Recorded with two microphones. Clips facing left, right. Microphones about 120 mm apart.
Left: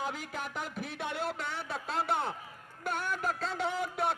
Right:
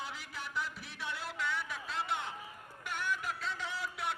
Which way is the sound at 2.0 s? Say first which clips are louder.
Left 6 dB; 40° left (ahead or behind).